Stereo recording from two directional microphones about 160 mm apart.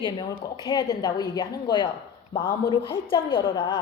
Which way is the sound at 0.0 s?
30° left (ahead or behind).